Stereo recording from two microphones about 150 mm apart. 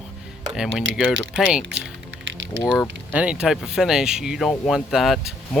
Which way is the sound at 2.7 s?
5° right (ahead or behind).